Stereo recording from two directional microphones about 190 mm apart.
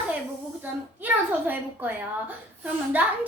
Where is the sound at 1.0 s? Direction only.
10° right (ahead or behind).